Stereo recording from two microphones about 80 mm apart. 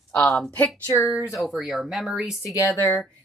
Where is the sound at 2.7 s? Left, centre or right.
Left.